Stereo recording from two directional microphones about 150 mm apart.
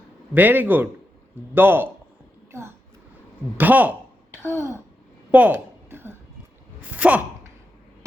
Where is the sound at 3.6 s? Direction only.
10° right (ahead or behind).